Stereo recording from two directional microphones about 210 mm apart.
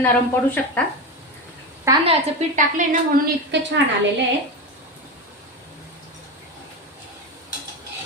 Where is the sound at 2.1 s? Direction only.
35° right (ahead or behind).